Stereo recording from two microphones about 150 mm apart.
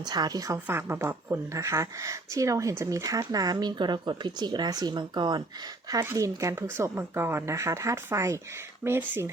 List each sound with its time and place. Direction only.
0.0 s speech: 25° right (ahead or behind)